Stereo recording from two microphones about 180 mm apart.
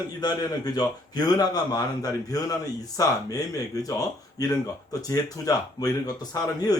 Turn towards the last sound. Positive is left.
turn(degrees=20)  # may be behind; listen again after turning